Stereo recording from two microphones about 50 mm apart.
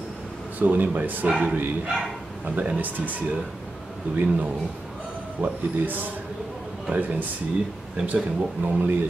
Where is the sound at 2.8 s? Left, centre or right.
Right.